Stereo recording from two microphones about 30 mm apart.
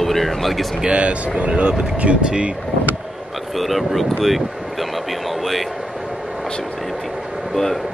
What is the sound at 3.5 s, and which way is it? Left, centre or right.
Speech, centre.